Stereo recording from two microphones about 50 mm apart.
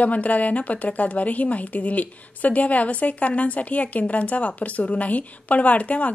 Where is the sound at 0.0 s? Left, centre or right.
Left.